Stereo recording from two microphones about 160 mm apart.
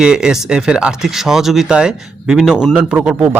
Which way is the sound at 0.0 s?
5° right (ahead or behind).